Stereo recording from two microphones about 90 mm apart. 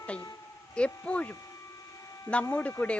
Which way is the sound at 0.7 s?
10° left (ahead or behind).